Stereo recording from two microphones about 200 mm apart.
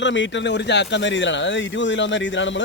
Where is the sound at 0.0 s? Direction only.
65° left (ahead or behind).